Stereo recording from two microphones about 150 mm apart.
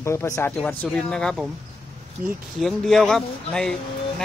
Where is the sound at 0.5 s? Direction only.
5° left (ahead or behind).